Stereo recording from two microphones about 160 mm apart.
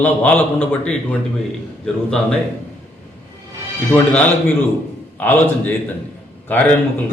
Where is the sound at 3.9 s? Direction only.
10° left (ahead or behind).